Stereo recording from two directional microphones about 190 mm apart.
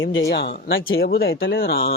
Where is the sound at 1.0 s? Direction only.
55° left (ahead or behind).